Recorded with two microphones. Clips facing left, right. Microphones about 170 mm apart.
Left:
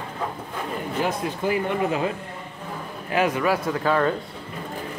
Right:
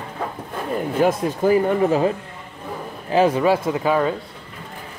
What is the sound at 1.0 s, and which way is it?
Speech, 40° right (ahead or behind).